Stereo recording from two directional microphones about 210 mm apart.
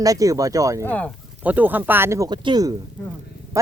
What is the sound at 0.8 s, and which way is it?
Speech, 5° left (ahead or behind).